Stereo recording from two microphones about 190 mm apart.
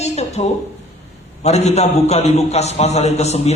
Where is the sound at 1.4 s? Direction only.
35° left (ahead or behind).